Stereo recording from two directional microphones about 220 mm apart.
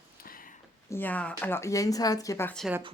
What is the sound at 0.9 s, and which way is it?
Speech, 10° left (ahead or behind).